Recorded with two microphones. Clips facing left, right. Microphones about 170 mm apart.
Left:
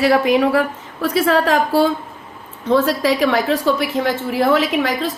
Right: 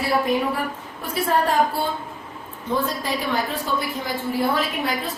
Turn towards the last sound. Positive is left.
turn(degrees=90)